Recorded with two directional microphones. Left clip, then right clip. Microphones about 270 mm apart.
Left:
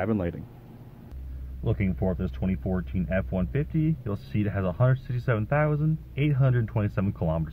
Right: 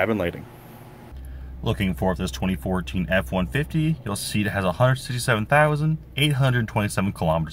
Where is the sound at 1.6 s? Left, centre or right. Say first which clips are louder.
Right 5 dB; centre.